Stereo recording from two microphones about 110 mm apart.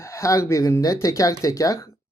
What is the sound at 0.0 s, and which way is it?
Speech, 30° left (ahead or behind).